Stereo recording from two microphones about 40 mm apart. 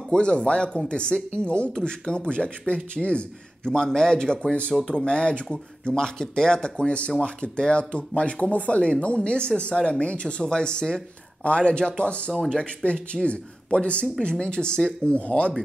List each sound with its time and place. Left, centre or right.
0.1 s speech: left
3.6 s speech: centre
6.9 s speech: left